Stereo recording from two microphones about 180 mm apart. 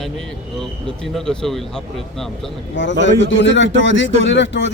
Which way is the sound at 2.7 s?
85° left.